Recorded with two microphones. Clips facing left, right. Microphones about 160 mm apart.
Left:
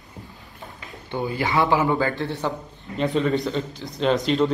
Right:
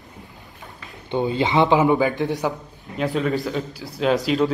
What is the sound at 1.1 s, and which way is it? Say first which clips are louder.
Speech: right 4 dB; 20° right (ahead or behind).